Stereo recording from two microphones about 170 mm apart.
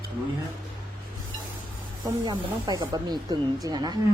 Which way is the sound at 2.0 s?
25° right (ahead or behind).